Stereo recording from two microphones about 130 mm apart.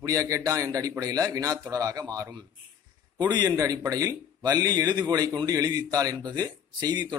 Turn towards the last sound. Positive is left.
turn(degrees=-30)  # may be behind; listen again after turning